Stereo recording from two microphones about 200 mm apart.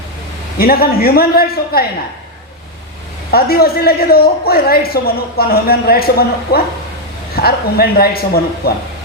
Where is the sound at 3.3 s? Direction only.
50° left (ahead or behind).